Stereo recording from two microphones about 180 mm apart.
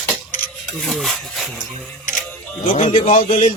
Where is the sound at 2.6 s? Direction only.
40° left (ahead or behind).